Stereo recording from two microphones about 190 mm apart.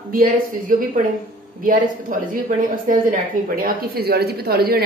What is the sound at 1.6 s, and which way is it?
A woman's voice, 45° right (ahead or behind).